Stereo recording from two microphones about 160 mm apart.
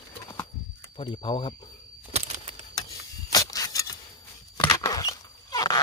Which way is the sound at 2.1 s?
40° right (ahead or behind).